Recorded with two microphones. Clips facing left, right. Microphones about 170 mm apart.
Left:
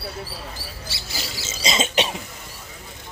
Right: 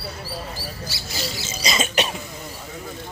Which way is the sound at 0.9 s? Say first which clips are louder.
Right 2 dB; 25° left (ahead or behind).